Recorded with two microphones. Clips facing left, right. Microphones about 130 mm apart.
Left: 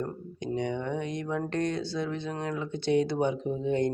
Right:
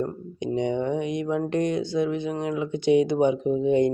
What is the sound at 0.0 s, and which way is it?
Speech, 20° right (ahead or behind).